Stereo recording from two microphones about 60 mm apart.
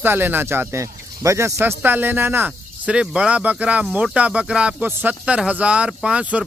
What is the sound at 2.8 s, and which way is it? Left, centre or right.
Speech, centre.